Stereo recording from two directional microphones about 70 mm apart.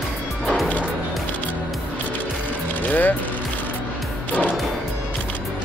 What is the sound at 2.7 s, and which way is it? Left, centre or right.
Vehicle, left.